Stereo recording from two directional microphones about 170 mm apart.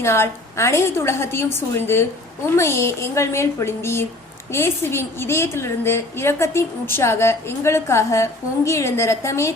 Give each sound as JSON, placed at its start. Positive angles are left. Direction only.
{"t": 0.0, "sound": "a woman's voice", "side_deg": 15}